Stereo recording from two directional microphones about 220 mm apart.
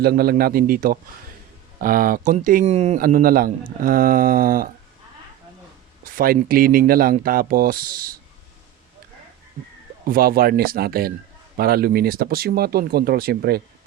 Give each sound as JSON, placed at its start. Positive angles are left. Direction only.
{"t": 0.0, "sound": "speech", "side_deg": -45}
{"t": 6.1, "sound": "speech", "side_deg": -40}
{"t": 10.1, "sound": "speech", "side_deg": -40}